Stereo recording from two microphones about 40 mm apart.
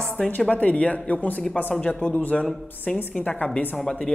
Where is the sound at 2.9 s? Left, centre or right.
Left.